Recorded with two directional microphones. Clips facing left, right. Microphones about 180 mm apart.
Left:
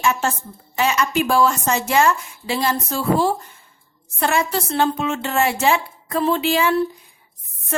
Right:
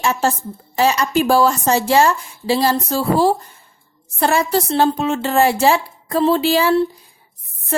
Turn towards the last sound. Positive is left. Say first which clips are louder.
# right 3 dB
turn(degrees=-35)  # may be behind; listen again after turning